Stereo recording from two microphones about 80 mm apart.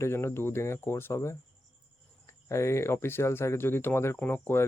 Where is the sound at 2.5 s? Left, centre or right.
Left.